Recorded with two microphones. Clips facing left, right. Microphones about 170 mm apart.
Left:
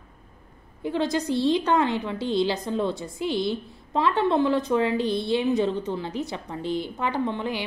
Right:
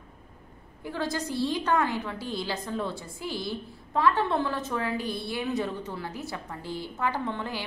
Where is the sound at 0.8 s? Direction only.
20° left (ahead or behind).